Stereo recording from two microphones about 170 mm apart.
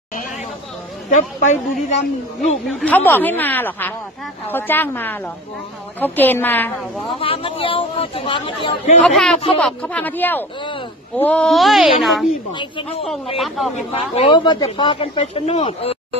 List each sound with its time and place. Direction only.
1.1 s speech: 45° left (ahead or behind)
2.7 s speech: 10° left (ahead or behind)
7.2 s speech: 30° left (ahead or behind)
9.0 s speech: centre (ahead or behind)
12.5 s speech: 30° left (ahead or behind)
13.4 s speech: centre (ahead or behind)
14.1 s speech: 30° left (ahead or behind)